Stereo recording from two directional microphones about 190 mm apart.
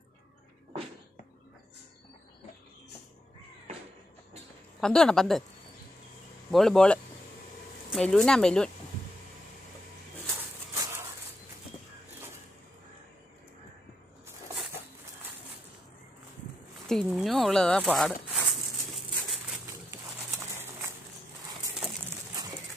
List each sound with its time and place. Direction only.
4.7 s speech: 5° left (ahead or behind)
6.5 s speech: centre (ahead or behind)
10.7 s a sound: 15° right (ahead or behind)
16.8 s speech: centre (ahead or behind)
19.9 s bird: 10° right (ahead or behind)